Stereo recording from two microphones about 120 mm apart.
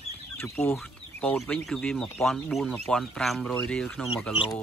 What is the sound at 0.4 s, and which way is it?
Speech, 15° left (ahead or behind).